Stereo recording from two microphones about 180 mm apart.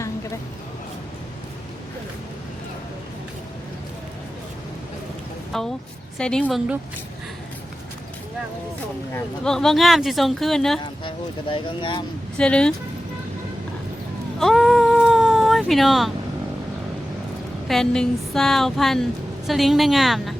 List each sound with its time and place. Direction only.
5.5 s speech: centre (ahead or behind)
6.4 s speech: 5° right (ahead or behind)
9.1 s speech: 5° left (ahead or behind)
11.0 s speech: 30° left (ahead or behind)
12.4 s speech: 5° left (ahead or behind)
14.3 s a sound: centre (ahead or behind)
17.7 s speech: 5° left (ahead or behind)